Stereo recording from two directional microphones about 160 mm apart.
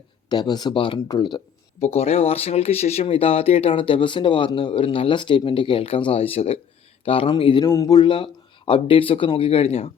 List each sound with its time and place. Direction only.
0.3 s speech: 25° left (ahead or behind)
1.8 s speech: 40° left (ahead or behind)
7.6 s speech: 20° left (ahead or behind); by 9.9 s 40° left (ahead or behind)